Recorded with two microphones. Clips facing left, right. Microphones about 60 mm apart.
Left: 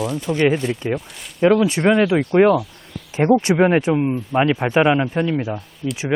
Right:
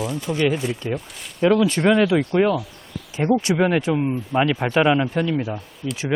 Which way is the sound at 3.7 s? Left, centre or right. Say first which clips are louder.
Left 3 dB; centre.